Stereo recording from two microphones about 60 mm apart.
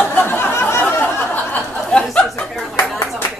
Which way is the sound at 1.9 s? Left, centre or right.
Centre.